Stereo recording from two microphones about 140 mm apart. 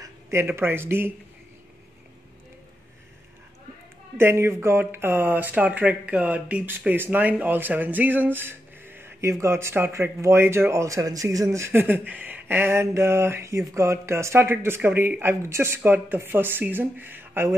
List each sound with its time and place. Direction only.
0.0 s speech: 20° right (ahead or behind)
4.2 s speech: 20° right (ahead or behind)